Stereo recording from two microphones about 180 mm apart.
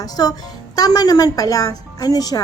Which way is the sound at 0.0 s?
20° left (ahead or behind).